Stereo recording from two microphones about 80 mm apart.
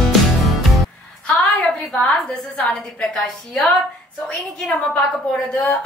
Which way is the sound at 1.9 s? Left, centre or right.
Centre.